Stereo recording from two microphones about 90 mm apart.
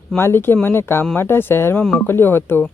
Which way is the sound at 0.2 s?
25° left (ahead or behind).